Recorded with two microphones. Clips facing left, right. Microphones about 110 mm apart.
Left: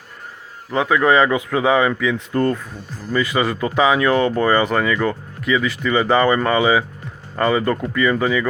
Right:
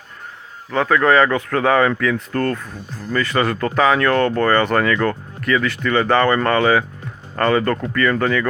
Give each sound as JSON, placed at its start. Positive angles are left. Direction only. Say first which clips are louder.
{"t": 0.7, "sound": "speech", "louder": "even", "side_deg": 5}
{"t": 2.3, "sound": "speech", "louder": "left 2 dB", "side_deg": 15}